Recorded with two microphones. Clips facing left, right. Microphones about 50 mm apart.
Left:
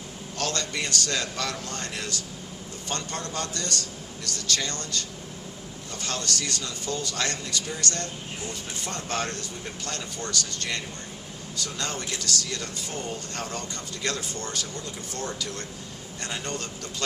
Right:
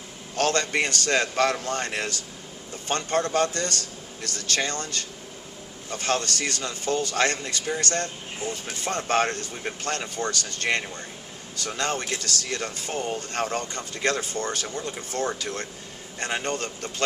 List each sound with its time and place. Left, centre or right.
0.3 s speech: right